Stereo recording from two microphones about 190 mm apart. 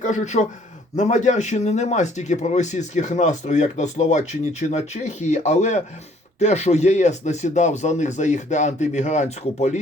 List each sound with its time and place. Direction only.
0.0 s speech: 40° left (ahead or behind)